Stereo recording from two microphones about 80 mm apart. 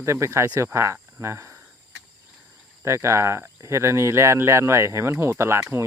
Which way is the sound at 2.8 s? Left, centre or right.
Right.